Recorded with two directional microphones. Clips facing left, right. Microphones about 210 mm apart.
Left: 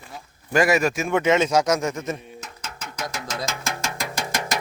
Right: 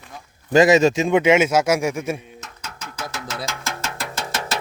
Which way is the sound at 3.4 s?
15° left (ahead or behind).